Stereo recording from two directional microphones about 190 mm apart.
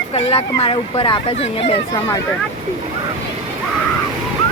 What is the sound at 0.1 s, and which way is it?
Speech, 30° left (ahead or behind).